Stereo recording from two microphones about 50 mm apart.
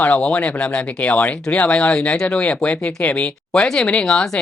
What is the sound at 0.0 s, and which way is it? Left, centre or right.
Speech, left.